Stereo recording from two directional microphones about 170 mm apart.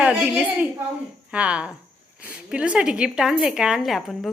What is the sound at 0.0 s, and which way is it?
Speech, 5° right (ahead or behind).